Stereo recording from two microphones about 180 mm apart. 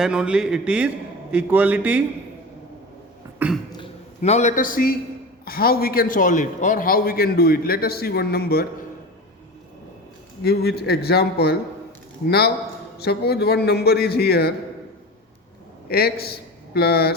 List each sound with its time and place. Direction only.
0.0 s a man's voice: 5° right (ahead or behind)
3.3 s cough: 10° right (ahead or behind)
4.2 s a man's voice: 40° left (ahead or behind); by 8.6 s 60° left (ahead or behind)
10.4 s a man's voice: 60° left (ahead or behind)
13.0 s a man's voice: 60° left (ahead or behind)
15.9 s speech: 60° left (ahead or behind)